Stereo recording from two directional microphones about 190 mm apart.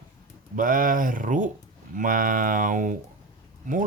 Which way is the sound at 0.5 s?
45° right (ahead or behind).